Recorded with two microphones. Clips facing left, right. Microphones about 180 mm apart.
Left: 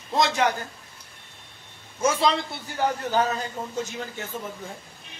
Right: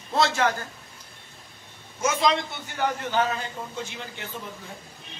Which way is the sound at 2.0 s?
30° left (ahead or behind).